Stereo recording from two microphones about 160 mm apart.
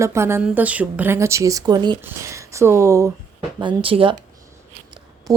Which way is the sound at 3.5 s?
30° right (ahead or behind).